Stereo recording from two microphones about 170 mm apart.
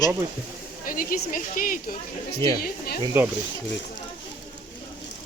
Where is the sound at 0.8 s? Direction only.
55° left (ahead or behind).